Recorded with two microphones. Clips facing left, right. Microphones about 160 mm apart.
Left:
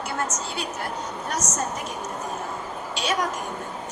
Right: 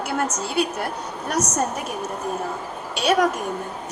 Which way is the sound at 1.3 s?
60° right (ahead or behind).